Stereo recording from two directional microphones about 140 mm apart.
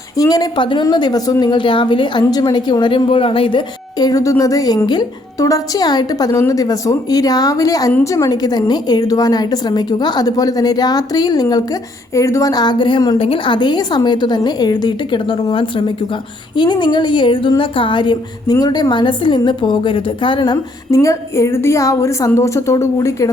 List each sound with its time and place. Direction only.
0.2 s a woman's voice: 25° left (ahead or behind)